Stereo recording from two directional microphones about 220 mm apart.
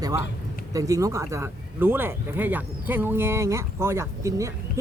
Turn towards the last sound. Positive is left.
turn(degrees=-15)  # may be behind; listen again after turning